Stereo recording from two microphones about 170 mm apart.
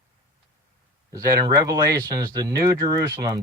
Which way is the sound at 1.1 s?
20° right (ahead or behind).